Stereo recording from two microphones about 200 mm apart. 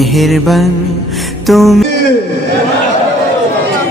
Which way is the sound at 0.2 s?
Centre (ahead or behind).